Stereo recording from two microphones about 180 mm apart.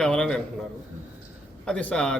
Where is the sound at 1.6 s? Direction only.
5° left (ahead or behind).